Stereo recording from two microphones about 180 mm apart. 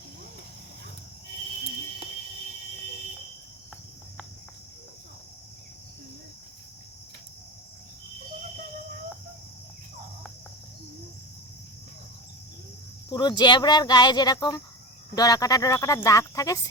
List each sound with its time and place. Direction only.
13.1 s speech: 25° left (ahead or behind)